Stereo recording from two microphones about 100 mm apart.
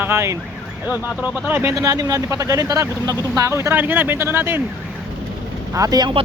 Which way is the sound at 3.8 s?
20° right (ahead or behind).